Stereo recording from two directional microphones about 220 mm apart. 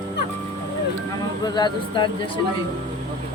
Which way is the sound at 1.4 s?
20° left (ahead or behind).